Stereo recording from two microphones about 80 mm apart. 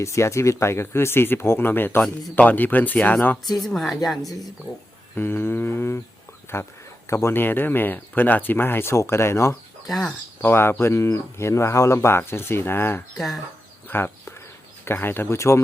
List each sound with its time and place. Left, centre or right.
0.0 s speech: left
3.6 s a woman's voice: centre
5.1 s speech: left
9.8 s speech: centre
10.4 s speech: left
13.1 s a woman's voice: centre
13.8 s a sound: left
14.8 s speech: left